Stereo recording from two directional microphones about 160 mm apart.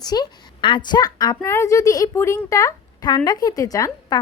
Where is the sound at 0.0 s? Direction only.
25° left (ahead or behind).